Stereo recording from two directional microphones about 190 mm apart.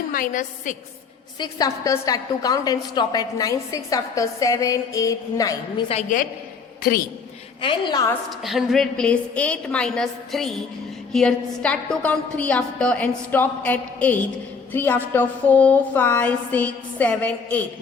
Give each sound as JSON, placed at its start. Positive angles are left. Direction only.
{"t": 0.1, "sound": "a woman's voice", "side_deg": 45}
{"t": 1.4, "sound": "a woman's voice", "side_deg": 20}
{"t": 5.9, "sound": "a woman's voice", "side_deg": 40}
{"t": 7.6, "sound": "a woman's voice", "side_deg": 25}
{"t": 8.4, "sound": "a woman's voice", "side_deg": 0}